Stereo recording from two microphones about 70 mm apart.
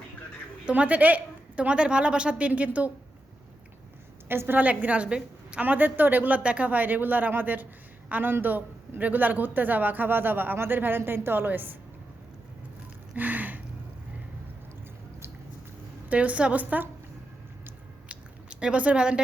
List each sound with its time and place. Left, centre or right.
0.6 s a woman's voice: centre
4.3 s a woman's voice: right
4.6 s speech: centre
13.1 s a sound: right
16.0 s speech: right
18.6 s a woman's voice: centre